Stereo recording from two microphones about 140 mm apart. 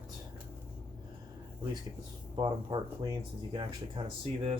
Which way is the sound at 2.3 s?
35° right (ahead or behind).